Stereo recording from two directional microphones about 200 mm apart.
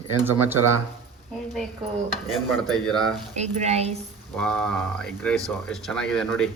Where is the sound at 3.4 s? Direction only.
35° right (ahead or behind).